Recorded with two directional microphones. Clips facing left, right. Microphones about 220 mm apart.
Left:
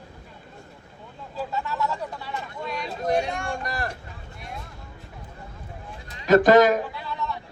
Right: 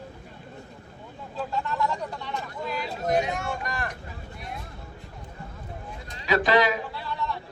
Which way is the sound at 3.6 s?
35° left (ahead or behind).